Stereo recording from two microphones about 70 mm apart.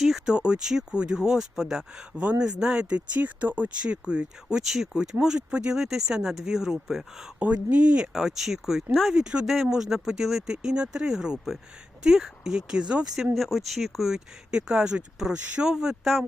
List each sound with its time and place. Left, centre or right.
0.0 s speech: centre
7.3 s speech: centre
9.1 s speech: centre
13.3 s speech: centre